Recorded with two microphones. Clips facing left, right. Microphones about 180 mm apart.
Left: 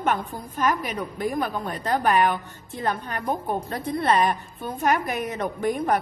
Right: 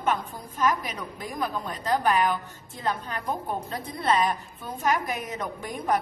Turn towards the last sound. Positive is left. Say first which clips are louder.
# left 4 dB
turn(degrees=60)  # may be behind; listen again after turning